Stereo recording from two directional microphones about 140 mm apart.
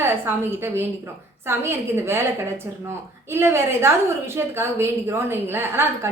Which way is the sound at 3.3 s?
20° right (ahead or behind).